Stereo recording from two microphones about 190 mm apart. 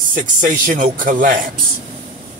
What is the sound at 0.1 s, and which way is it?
A man's voice, 45° right (ahead or behind).